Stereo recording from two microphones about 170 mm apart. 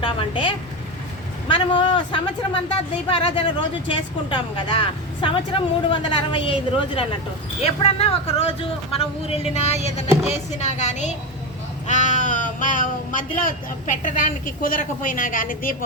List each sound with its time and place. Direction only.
0.0 s a woman's voice: 30° left (ahead or behind); by 15.7 s 55° left (ahead or behind)